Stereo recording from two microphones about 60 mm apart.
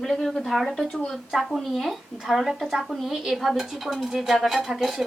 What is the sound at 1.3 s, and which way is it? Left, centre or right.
Speech, centre.